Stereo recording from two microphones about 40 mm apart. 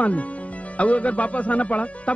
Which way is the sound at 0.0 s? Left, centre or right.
Left.